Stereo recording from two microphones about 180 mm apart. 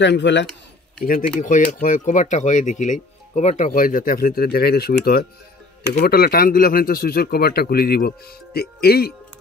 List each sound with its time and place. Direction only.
0.0 s speech: 75° left (ahead or behind)
1.0 s speech: 5° left (ahead or behind)
1.4 s a man's voice: 45° left (ahead or behind); by 9.1 s 60° left (ahead or behind)